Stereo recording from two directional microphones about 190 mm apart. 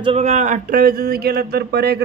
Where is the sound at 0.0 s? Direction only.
35° right (ahead or behind).